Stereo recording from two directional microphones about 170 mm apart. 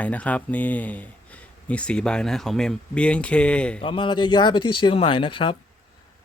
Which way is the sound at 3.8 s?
30° left (ahead or behind).